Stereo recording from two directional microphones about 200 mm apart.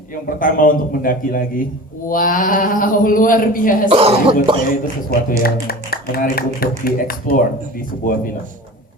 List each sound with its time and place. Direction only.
0.3 s speech: 45° left (ahead or behind)
3.8 s speech: 30° right (ahead or behind)
5.4 s speech: 50° left (ahead or behind)